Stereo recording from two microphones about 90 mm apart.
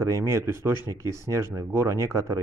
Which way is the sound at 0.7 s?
50° left (ahead or behind).